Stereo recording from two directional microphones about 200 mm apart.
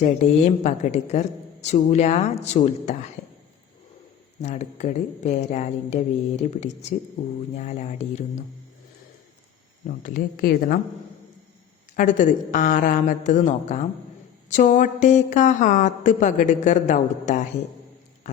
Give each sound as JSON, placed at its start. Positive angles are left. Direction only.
{"t": 0.0, "sound": "speech", "side_deg": 35}
{"t": 4.4, "sound": "speech", "side_deg": 35}
{"t": 9.8, "sound": "speech", "side_deg": 40}
{"t": 11.9, "sound": "speech", "side_deg": 40}